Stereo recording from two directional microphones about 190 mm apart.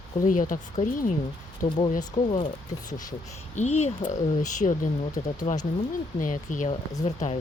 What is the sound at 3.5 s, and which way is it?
Speech, 35° left (ahead or behind).